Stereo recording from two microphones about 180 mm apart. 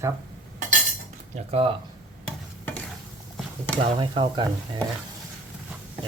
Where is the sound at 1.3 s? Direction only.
30° right (ahead or behind).